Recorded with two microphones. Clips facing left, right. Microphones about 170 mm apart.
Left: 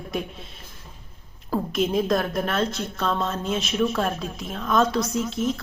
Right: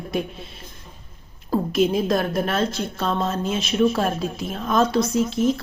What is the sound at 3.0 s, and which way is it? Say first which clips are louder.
Speech: right 1 dB; 35° right (ahead or behind).